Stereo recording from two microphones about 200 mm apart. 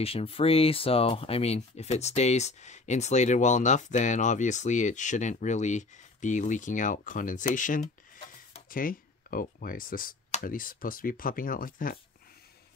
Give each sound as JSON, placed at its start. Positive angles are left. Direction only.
{"t": 0.0, "sound": "speech", "side_deg": 30}